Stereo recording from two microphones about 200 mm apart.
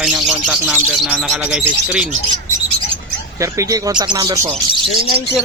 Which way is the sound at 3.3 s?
15° right (ahead or behind).